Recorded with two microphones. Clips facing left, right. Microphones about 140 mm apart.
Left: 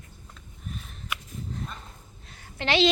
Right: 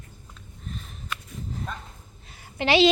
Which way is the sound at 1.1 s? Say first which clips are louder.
Even; 10° left (ahead or behind).